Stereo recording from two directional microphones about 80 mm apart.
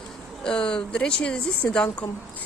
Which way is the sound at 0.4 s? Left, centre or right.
Centre.